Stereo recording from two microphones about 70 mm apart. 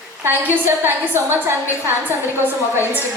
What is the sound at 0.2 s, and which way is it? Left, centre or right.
A woman's voice, right.